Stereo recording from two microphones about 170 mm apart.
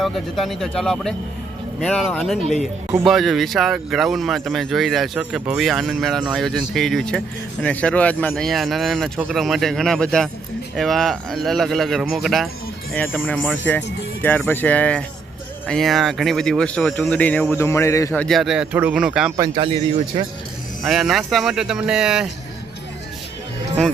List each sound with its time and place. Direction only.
0.0 s speech: centre (ahead or behind); by 18.2 s 15° left (ahead or behind)
18.2 s speech: centre (ahead or behind)
19.5 s speech: 30° right (ahead or behind)
20.8 s speech: centre (ahead or behind)